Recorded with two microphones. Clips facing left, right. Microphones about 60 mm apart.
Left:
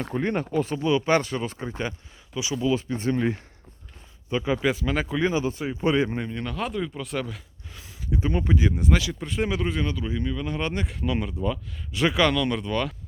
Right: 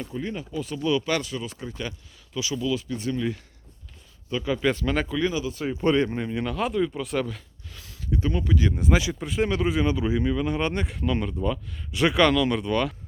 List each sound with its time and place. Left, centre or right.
0.0 s speech: left
0.6 s speech: left
2.3 s speech: left
4.3 s speech: left
4.6 s speech: centre
5.0 s speech: left
5.6 s speech: centre
6.2 s speech: centre
7.7 s a sound: centre
8.4 s speech: left
8.7 s speech: centre